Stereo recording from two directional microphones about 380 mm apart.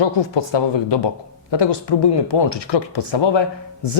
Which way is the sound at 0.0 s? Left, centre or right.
Left.